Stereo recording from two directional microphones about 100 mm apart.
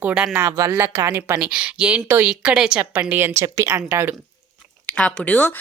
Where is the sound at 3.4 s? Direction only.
35° right (ahead or behind).